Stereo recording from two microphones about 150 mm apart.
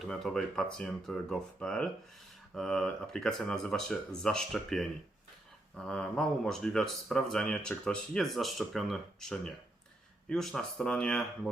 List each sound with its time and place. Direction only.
0.0 s speech: centre (ahead or behind)